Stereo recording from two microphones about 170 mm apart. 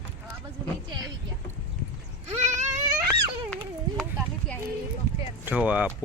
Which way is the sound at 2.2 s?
40° right (ahead or behind).